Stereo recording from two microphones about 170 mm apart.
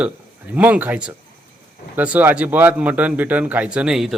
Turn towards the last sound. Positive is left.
turn(degrees=-5)  # may be behind; listen again after turning